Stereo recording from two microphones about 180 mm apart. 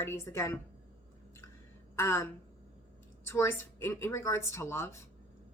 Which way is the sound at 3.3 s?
15° left (ahead or behind).